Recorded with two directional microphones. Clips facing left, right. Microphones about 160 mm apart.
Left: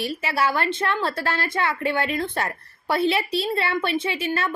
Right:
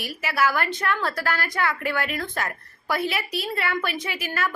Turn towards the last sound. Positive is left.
turn(degrees=25)  # may be behind; listen again after turning